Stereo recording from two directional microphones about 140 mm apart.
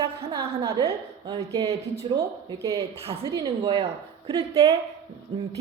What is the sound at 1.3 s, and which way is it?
Speech, 45° right (ahead or behind).